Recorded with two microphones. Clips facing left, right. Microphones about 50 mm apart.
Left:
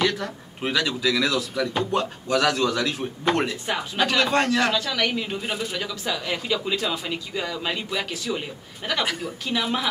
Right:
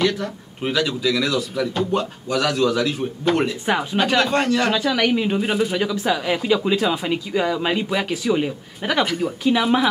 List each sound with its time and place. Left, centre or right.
0.0 s speech: centre
3.6 s speech: centre
5.4 s speech: centre
9.0 s speech: centre
9.4 s speech: centre